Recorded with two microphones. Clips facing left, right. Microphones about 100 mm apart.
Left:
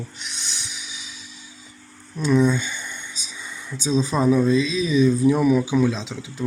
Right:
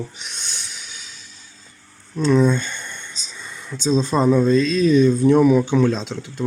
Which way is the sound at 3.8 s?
10° left (ahead or behind).